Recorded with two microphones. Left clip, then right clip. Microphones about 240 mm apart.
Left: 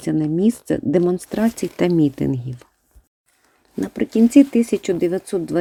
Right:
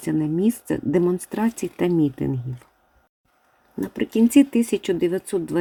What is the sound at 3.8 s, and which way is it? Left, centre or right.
Speech, centre.